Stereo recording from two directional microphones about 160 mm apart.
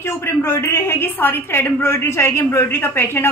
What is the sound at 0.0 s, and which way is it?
A woman's voice, 15° left (ahead or behind).